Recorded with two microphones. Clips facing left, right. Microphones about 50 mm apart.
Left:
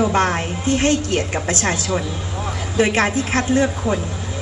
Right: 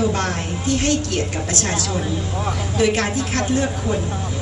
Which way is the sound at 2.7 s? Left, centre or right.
Left.